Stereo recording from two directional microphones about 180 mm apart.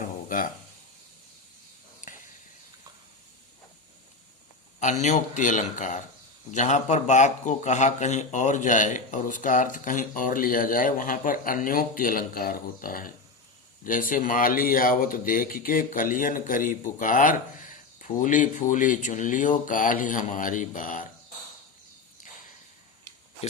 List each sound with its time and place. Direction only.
0.3 s speech: 50° left (ahead or behind)
4.8 s speech: 40° left (ahead or behind)